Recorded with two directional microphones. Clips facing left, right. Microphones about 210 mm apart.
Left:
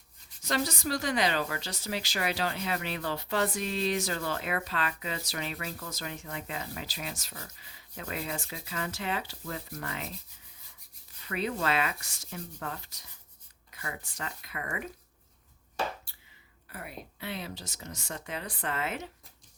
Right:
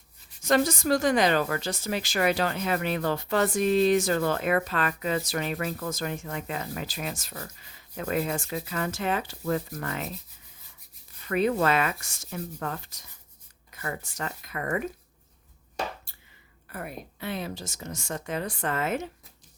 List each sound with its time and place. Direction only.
0.4 s a woman's voice: 50° right (ahead or behind)
11.3 s a woman's voice: 50° right (ahead or behind)
13.8 s a woman's voice: 45° right (ahead or behind)
16.7 s a woman's voice: 50° right (ahead or behind)